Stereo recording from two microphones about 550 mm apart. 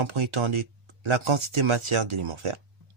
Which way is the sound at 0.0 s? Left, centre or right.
Right.